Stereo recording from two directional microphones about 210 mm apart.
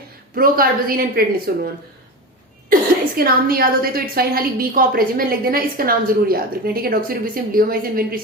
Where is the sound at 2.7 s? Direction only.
45° right (ahead or behind).